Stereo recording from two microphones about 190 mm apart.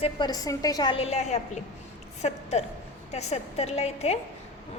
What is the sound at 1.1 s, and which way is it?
A woman's voice, 35° left (ahead or behind).